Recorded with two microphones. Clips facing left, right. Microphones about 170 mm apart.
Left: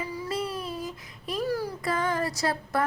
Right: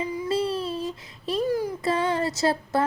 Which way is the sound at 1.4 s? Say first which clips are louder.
Right 4 dB; 20° right (ahead or behind).